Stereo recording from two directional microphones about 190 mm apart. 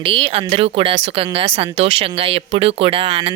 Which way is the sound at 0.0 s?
30° right (ahead or behind).